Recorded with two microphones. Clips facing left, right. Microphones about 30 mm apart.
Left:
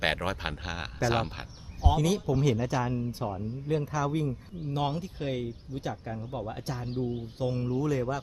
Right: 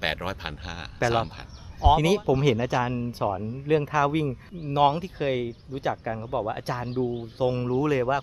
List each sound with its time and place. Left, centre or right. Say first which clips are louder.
0.0 s speech: even; centre
1.8 s speech: right 7 dB; right